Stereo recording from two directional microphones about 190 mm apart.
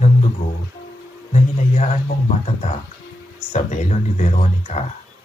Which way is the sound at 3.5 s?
40° left (ahead or behind).